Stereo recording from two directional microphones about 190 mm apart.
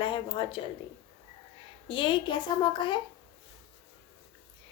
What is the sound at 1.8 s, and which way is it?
A woman's voice, 25° left (ahead or behind).